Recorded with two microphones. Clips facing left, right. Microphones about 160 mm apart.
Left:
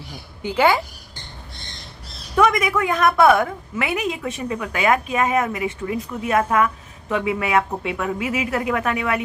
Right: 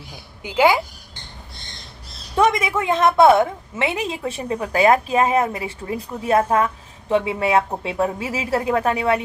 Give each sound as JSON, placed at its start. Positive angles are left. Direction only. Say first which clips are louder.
{"t": 0.4, "sound": "a woman's voice", "louder": "right 1 dB", "side_deg": -10}
{"t": 2.3, "sound": "a woman's voice", "louder": "even", "side_deg": -25}